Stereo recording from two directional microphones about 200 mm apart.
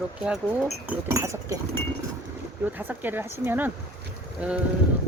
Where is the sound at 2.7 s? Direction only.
10° right (ahead or behind).